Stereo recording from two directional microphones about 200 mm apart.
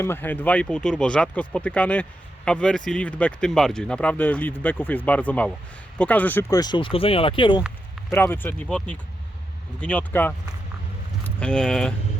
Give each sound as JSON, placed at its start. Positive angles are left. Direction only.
{"t": 0.0, "sound": "speech", "side_deg": 10}
{"t": 8.1, "sound": "speech", "side_deg": 10}